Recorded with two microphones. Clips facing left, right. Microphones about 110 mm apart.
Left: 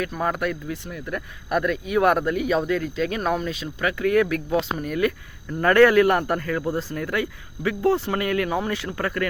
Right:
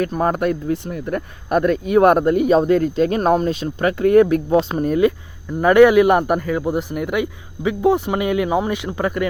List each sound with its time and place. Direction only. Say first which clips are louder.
0.2 s speech: right 5 dB; 35° right (ahead or behind)
5.5 s a man's voice: right 5 dB; 15° right (ahead or behind)